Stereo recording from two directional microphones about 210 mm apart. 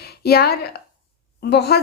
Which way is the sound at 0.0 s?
50° left (ahead or behind).